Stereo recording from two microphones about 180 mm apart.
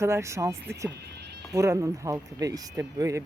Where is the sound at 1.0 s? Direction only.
70° right (ahead or behind).